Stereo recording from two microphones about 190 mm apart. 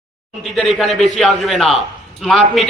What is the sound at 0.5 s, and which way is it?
A man's voice, centre (ahead or behind).